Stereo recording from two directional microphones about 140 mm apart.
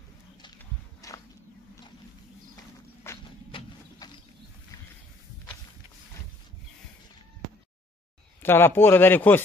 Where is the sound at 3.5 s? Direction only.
40° left (ahead or behind).